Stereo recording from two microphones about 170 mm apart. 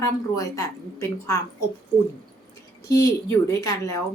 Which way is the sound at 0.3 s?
20° left (ahead or behind).